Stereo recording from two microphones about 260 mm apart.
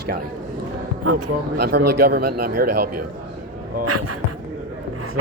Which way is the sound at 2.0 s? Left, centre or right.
Right.